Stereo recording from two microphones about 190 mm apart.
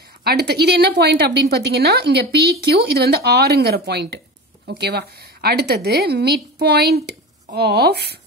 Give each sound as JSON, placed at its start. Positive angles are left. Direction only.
{"t": 0.2, "sound": "a woman's voice", "side_deg": -55}